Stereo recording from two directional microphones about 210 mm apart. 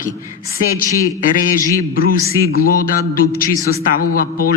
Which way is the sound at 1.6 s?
15° left (ahead or behind).